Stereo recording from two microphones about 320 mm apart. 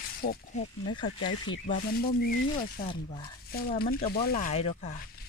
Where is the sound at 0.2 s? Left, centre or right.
Left.